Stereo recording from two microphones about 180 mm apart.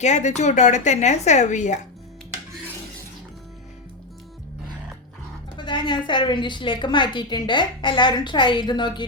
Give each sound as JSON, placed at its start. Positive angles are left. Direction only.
{"t": 0.0, "sound": "a woman's voice", "side_deg": 40}
{"t": 5.5, "sound": "a sound", "side_deg": 25}
{"t": 6.1, "sound": "a woman's voice", "side_deg": 25}